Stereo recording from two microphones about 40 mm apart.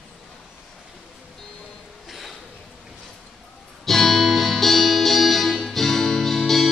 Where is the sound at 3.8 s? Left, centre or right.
Centre.